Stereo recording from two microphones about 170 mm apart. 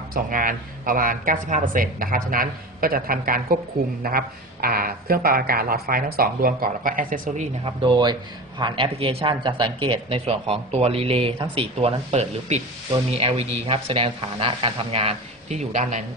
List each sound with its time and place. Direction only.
0.1 s a man's voice: 55° right (ahead or behind)
7.6 s a man's voice: 30° right (ahead or behind); by 16.0 s 45° right (ahead or behind)